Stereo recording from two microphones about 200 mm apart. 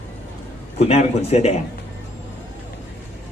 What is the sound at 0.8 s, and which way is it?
Speech, 30° left (ahead or behind).